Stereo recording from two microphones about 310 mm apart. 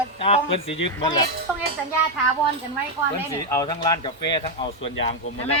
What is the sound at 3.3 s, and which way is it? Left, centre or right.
Speech, centre.